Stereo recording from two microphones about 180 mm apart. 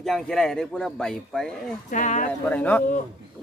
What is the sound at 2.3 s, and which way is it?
Speech, 10° left (ahead or behind).